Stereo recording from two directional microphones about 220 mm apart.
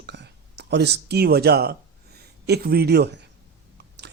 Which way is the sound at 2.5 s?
45° right (ahead or behind).